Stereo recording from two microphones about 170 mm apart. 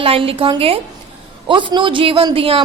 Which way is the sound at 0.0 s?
35° right (ahead or behind).